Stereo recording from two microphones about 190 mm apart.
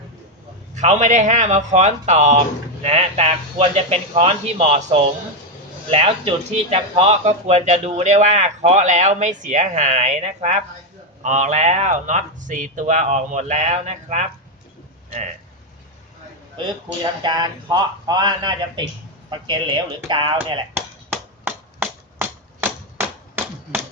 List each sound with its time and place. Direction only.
0.8 s speech: 40° right (ahead or behind)
16.6 s speech: 25° right (ahead or behind)
21.4 s chop: 10° right (ahead or behind)
23.0 s a sound: 10° right (ahead or behind)